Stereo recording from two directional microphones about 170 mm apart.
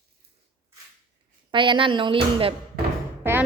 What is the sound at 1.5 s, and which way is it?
Speech, 30° right (ahead or behind).